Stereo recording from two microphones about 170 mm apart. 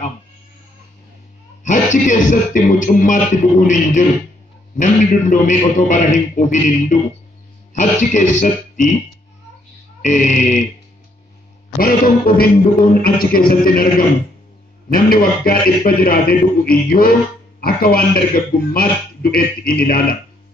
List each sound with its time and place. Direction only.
1.6 s a man's voice: 45° left (ahead or behind)
10.0 s a man's voice: 45° left (ahead or behind)
11.8 s a man's voice: 60° left (ahead or behind)